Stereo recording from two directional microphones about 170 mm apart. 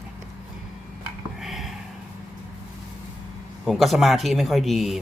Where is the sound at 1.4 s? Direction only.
Centre (ahead or behind).